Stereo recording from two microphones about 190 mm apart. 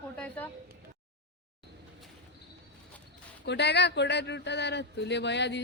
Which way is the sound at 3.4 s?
65° left (ahead or behind).